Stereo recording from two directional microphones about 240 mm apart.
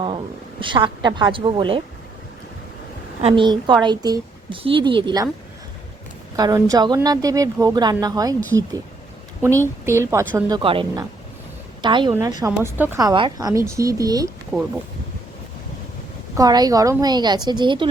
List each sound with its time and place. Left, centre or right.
0.6 s a woman's voice: centre
3.2 s a woman's voice: right
6.3 s a woman's voice: centre
9.4 s a woman's voice: centre
14.5 s speech: centre
16.3 s a woman's voice: centre